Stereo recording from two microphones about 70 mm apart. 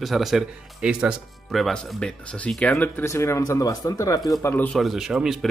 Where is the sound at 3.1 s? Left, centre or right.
Left.